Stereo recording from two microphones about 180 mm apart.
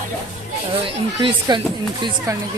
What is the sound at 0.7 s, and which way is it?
Speech, 30° right (ahead or behind).